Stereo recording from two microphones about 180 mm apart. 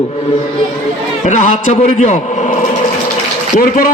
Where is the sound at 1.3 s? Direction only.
45° left (ahead or behind).